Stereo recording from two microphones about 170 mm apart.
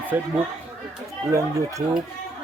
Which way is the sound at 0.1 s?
10° right (ahead or behind).